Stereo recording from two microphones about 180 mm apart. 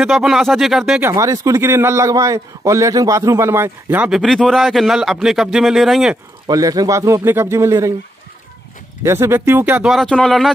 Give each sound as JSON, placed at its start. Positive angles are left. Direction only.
{"t": 0.0, "sound": "speech", "side_deg": 0}
{"t": 1.1, "sound": "a man's voice", "side_deg": -20}
{"t": 6.4, "sound": "a man's voice", "side_deg": -20}
{"t": 9.0, "sound": "a man's voice", "side_deg": -15}